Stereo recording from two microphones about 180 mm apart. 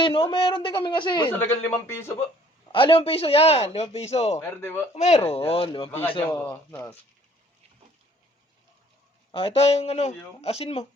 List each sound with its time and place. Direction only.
0.0 s speech: 30° left (ahead or behind)
1.4 s speech: 10° left (ahead or behind)
2.7 s speech: 30° left (ahead or behind)
4.4 s speech: 10° left (ahead or behind)
4.9 s speech: 35° left (ahead or behind); by 6.9 s 20° left (ahead or behind)
9.3 s speech: 30° left (ahead or behind)